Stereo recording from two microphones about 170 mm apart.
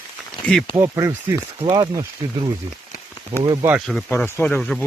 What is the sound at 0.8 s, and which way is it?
Speech, 15° right (ahead or behind).